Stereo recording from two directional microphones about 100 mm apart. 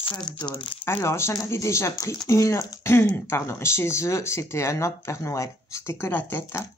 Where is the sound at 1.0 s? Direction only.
25° left (ahead or behind).